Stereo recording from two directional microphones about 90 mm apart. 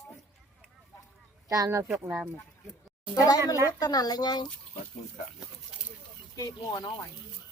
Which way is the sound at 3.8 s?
45° left (ahead or behind).